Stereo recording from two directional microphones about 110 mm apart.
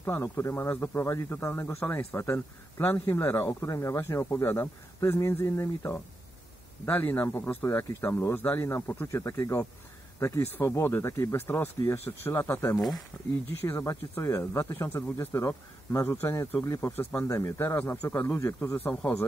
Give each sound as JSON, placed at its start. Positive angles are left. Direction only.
{"t": 0.0, "sound": "speech", "side_deg": 25}
{"t": 16.8, "sound": "speech", "side_deg": 20}
{"t": 18.9, "sound": "speech", "side_deg": 10}